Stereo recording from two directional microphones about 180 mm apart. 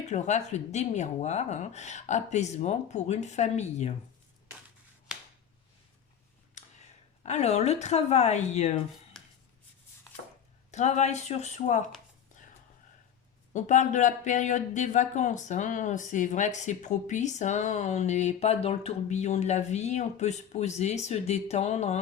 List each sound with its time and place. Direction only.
0.0 s speech: 40° left (ahead or behind)
5.1 s a sound: 5° right (ahead or behind)
6.5 s speech: 40° left (ahead or behind)
9.2 s writing: centre (ahead or behind)
10.7 s speech: 40° left (ahead or behind)
13.5 s speech: 40° left (ahead or behind)